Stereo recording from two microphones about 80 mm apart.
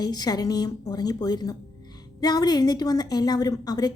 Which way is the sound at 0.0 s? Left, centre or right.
Left.